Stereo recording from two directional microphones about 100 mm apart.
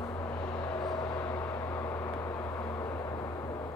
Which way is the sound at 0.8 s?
40° left (ahead or behind).